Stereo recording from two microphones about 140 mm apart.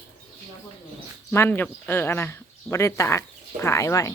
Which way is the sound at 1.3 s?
15° left (ahead or behind).